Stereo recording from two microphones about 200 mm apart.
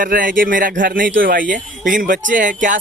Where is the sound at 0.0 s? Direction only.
45° right (ahead or behind).